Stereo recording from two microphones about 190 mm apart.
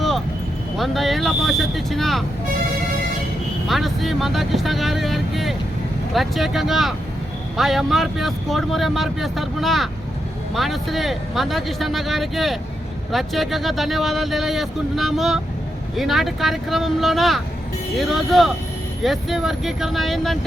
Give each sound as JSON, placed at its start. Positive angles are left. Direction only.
{"t": 0.8, "sound": "speech", "side_deg": 0}
{"t": 3.7, "sound": "speech", "side_deg": 0}